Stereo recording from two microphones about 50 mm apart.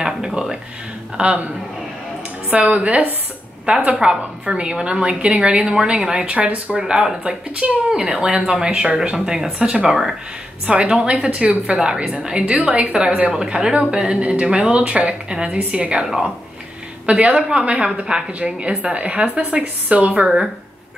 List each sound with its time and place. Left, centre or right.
0.3 s a sound: centre
1.1 s a woman's voice: right
2.5 s a woman's voice: right
6.8 s speech: centre
9.8 s speech: centre
10.7 s a woman's voice: centre
17.3 s a woman's voice: centre